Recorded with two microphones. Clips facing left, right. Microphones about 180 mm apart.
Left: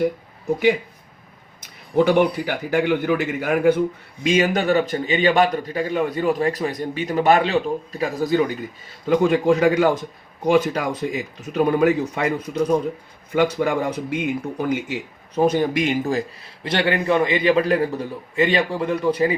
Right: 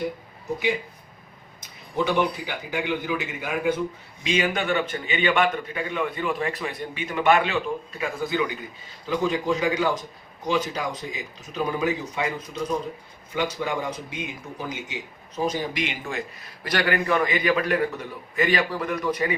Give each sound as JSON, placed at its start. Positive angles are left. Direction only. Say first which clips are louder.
{"t": 2.0, "sound": "a man's voice", "louder": "left 7 dB", "side_deg": 55}
{"t": 9.0, "sound": "a man's voice", "louder": "left 7 dB", "side_deg": 55}